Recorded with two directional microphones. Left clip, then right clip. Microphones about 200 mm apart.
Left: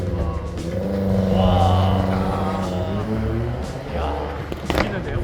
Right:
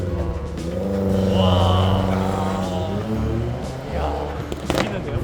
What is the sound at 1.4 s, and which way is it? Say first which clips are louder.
Vehicle: left 1 dB; 20° right (ahead or behind).